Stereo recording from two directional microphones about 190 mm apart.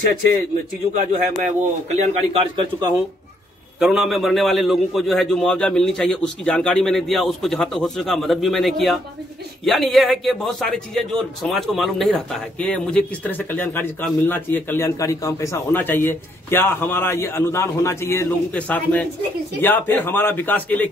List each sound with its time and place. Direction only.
1.4 s a man's voice: 35° right (ahead or behind)
3.8 s a man's voice: centre (ahead or behind)